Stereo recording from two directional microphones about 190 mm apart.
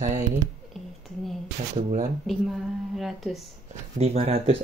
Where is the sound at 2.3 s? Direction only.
Centre (ahead or behind).